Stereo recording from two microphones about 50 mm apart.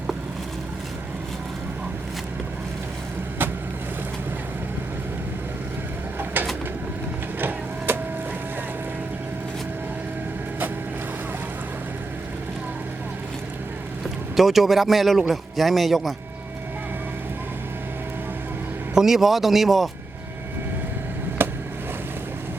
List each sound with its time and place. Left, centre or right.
6.1 s bird: right
7.3 s printer: right
14.3 s a man's voice: centre
18.9 s a man's voice: centre
21.4 s a sound: right